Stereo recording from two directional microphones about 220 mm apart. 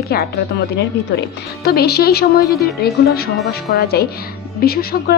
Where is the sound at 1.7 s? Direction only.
45° left (ahead or behind).